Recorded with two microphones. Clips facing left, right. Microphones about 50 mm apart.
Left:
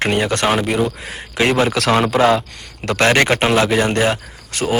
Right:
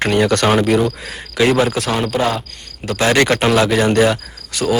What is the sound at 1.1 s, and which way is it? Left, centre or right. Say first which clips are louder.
Speech: right 2 dB; left.